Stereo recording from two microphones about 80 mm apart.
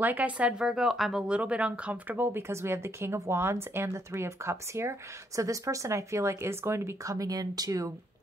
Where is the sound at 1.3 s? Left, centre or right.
Centre; by 7.9 s right.